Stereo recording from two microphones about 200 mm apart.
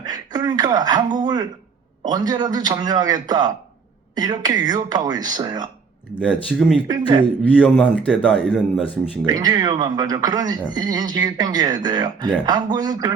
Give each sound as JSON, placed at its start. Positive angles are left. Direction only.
{"t": 0.0, "sound": "speech", "side_deg": -20}
{"t": 6.3, "sound": "speech", "side_deg": 0}
{"t": 6.8, "sound": "speech", "side_deg": -20}
{"t": 7.6, "sound": "speech", "side_deg": 5}
{"t": 8.0, "sound": "speech", "side_deg": -5}
{"t": 9.2, "sound": "speech", "side_deg": -20}